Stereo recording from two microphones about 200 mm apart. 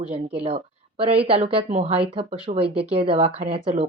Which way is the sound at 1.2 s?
30° right (ahead or behind).